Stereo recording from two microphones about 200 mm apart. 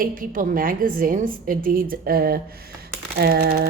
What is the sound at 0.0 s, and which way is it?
Speech, 45° right (ahead or behind).